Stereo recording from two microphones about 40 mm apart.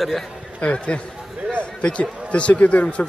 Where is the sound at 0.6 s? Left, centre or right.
Left.